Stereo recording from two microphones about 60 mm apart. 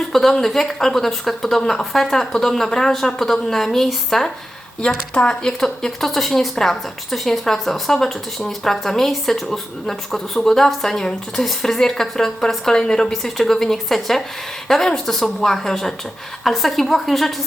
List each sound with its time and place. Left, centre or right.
0.1 s a woman's voice: centre
5.1 s a woman's voice: centre